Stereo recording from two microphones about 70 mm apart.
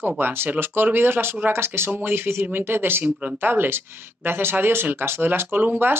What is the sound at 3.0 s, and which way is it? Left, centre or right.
Speech, centre.